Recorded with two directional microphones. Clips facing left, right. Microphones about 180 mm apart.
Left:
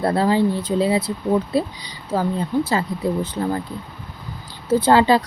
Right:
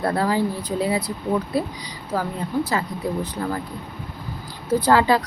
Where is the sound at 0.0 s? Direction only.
25° left (ahead or behind).